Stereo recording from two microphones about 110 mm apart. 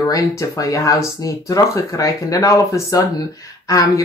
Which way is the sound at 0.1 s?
30° left (ahead or behind).